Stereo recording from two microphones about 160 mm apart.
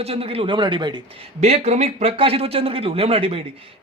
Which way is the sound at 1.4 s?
40° right (ahead or behind).